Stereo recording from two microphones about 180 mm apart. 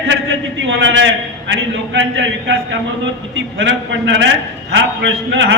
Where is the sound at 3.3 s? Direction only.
90° right.